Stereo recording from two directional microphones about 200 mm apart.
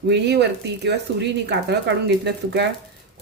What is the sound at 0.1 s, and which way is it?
Speech, 60° right (ahead or behind).